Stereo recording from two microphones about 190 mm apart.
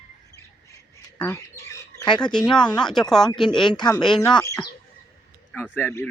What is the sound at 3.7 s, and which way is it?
Speech, 20° left (ahead or behind).